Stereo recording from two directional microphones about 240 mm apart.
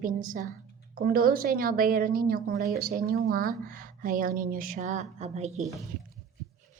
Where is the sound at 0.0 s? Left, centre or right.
Right.